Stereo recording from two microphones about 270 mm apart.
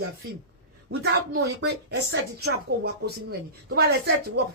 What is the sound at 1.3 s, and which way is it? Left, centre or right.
Speech, right.